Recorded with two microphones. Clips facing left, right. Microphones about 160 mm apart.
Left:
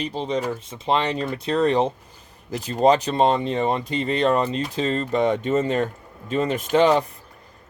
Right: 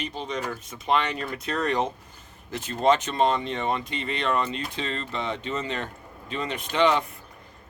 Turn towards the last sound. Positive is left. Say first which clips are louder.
# left 5 dB
turn(degrees=40)  # may be behind; listen again after turning